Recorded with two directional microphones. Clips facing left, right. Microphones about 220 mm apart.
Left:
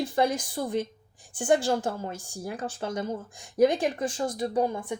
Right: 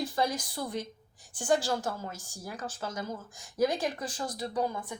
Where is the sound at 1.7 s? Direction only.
25° left (ahead or behind).